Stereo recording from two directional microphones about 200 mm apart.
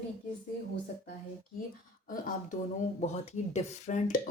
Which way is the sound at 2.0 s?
45° left (ahead or behind).